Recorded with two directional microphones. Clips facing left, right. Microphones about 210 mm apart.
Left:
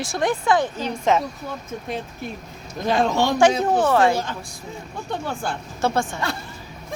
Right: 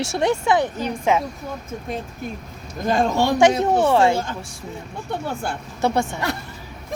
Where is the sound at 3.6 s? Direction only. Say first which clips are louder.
Right 1 dB; 25° right (ahead or behind).